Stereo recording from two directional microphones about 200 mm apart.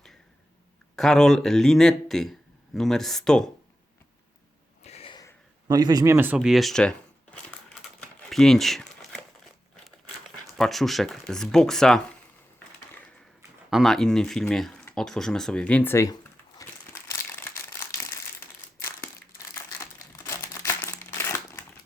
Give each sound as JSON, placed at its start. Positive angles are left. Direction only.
{"t": 0.9, "sound": "speech", "side_deg": 0}
{"t": 4.8, "sound": "a sound", "side_deg": 30}
{"t": 5.6, "sound": "speech", "side_deg": -20}
{"t": 8.3, "sound": "a sound", "side_deg": 0}
{"t": 10.6, "sound": "speech", "side_deg": 0}
{"t": 13.7, "sound": "speech", "side_deg": 0}
{"t": 16.6, "sound": "crumpling", "side_deg": 15}